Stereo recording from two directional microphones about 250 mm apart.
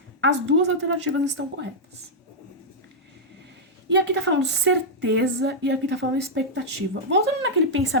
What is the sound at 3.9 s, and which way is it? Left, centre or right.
Speech, right.